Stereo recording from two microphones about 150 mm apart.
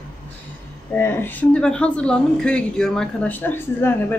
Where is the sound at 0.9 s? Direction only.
15° left (ahead or behind).